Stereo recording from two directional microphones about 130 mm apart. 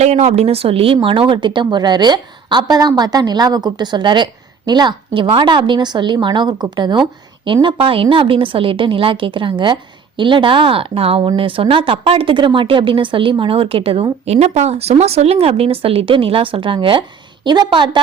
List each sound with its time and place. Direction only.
0.0 s a woman's voice: 60° right (ahead or behind); by 18.0 s 35° right (ahead or behind)